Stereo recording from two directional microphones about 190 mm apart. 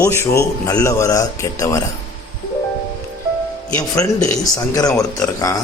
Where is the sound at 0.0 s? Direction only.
15° left (ahead or behind).